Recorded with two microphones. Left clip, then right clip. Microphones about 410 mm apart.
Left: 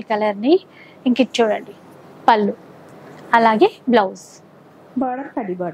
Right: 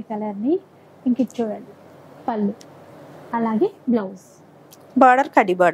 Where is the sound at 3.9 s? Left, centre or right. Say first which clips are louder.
Left 8 dB; left.